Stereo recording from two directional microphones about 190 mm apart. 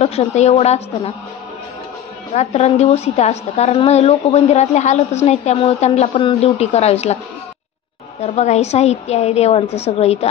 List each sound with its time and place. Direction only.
0.0 s a woman's voice: 35° left (ahead or behind)
2.3 s a woman's voice: 35° left (ahead or behind)
8.2 s a woman's voice: 35° left (ahead or behind)